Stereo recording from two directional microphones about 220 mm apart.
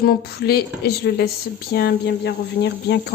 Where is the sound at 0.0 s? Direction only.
45° left (ahead or behind).